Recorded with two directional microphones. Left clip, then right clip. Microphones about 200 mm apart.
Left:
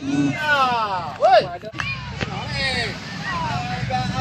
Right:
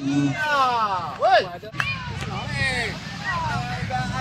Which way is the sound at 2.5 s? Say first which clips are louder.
Left 1 dB; 30° left (ahead or behind).